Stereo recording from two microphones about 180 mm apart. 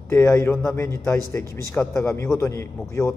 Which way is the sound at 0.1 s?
15° left (ahead or behind).